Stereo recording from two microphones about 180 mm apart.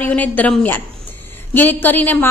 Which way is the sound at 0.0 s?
10° left (ahead or behind).